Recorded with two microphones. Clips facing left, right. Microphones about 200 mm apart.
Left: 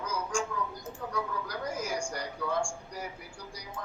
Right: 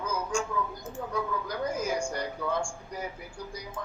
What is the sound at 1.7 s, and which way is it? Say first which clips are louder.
Speech: right 3 dB; 20° right (ahead or behind).